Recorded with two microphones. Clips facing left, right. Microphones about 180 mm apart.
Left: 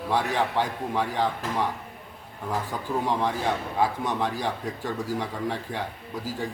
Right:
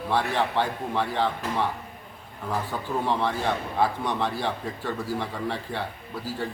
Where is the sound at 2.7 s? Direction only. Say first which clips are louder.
Even; 15° left (ahead or behind).